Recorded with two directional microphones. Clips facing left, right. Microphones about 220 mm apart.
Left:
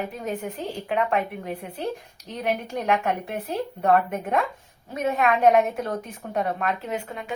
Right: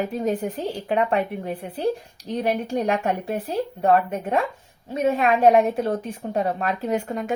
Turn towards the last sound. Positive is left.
turn(degrees=-45)  # may be behind; listen again after turning